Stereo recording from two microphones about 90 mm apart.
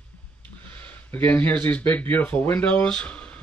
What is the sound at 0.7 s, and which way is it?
Speech, 20° left (ahead or behind).